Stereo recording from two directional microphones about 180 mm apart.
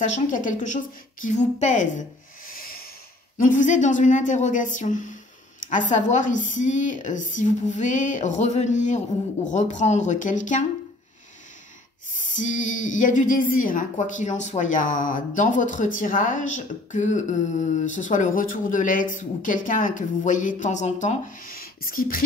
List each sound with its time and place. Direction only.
0.0 s a woman's voice: 45° left (ahead or behind)
12.2 s a woman's voice: 45° left (ahead or behind)